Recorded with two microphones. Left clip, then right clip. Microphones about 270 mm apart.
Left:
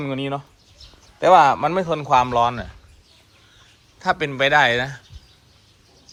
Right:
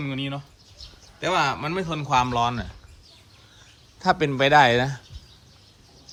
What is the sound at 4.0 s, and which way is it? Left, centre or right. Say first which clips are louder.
Speech: left 1 dB; centre.